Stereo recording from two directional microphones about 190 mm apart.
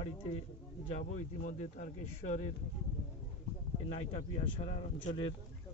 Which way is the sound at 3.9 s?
30° left (ahead or behind).